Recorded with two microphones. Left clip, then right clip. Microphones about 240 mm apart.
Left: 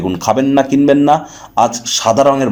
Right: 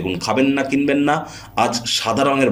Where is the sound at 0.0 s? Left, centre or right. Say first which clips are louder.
Left 5 dB; left.